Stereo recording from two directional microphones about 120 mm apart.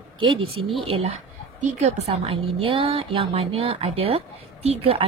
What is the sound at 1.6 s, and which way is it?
A woman's voice, 65° right (ahead or behind).